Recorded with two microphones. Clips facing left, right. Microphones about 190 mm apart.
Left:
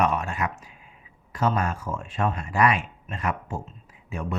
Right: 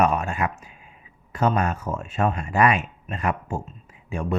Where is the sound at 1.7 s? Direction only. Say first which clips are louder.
Right 3 dB; 20° right (ahead or behind).